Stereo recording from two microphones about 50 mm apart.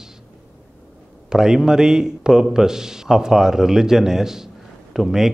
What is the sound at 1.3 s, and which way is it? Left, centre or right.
A man's voice, centre.